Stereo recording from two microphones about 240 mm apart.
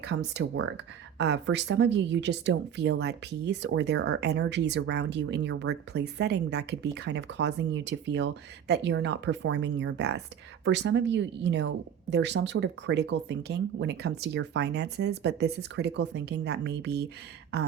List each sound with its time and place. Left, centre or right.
0.1 s speech: right